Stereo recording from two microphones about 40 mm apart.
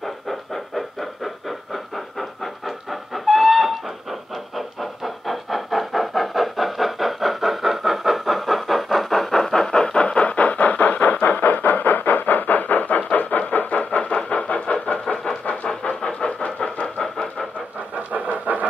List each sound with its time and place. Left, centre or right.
0.0 s a sound: centre; by 13.4 s left
13.5 s vehicle: left
15.4 s train: left
15.7 s vehicle: left
16.8 s vehicle: centre
17.9 s vehicle: right